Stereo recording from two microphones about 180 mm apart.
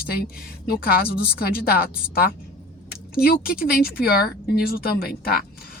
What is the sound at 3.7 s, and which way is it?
Speech, 55° left (ahead or behind).